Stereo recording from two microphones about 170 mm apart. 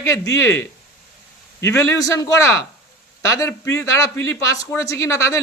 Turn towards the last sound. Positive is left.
turn(degrees=15)  # may be behind; listen again after turning